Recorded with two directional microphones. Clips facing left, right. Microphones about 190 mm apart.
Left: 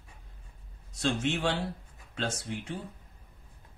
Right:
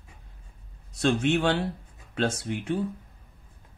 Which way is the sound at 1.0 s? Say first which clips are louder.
Right 6 dB; 65° right (ahead or behind).